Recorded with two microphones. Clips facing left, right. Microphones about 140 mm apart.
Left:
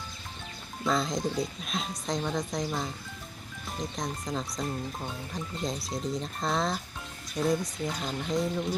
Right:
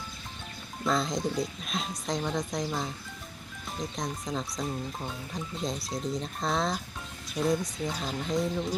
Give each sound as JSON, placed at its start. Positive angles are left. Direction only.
{"t": 0.9, "sound": "speech", "side_deg": 0}
{"t": 3.8, "sound": "speech", "side_deg": 0}